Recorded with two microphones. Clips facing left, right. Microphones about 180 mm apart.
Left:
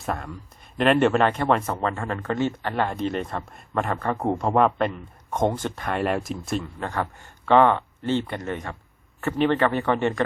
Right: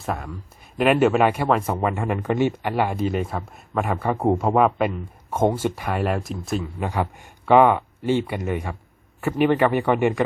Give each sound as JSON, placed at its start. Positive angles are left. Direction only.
{"t": 0.0, "sound": "speech", "side_deg": -5}